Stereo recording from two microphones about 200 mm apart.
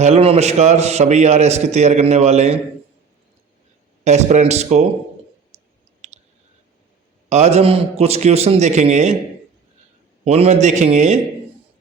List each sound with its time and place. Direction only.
0.0 s a man's voice: 30° right (ahead or behind)
4.0 s a man's voice: 35° right (ahead or behind)
7.3 s a man's voice: 35° right (ahead or behind)
10.2 s a man's voice: 30° right (ahead or behind)